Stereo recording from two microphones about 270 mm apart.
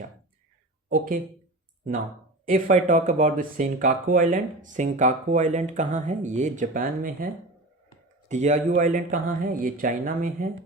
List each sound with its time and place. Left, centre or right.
0.9 s speech: right
2.5 s speech: right
8.3 s speech: right